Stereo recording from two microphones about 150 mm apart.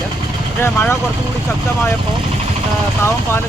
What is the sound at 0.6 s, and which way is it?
Speech, 15° left (ahead or behind).